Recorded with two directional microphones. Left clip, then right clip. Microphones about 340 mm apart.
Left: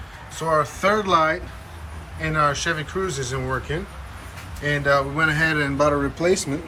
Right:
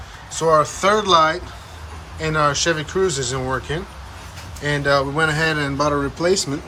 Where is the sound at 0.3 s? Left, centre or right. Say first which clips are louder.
Right 5 dB; centre.